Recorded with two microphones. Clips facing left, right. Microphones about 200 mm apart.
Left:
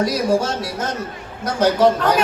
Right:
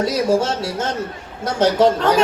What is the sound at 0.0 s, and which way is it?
A child's voice, 25° right (ahead or behind).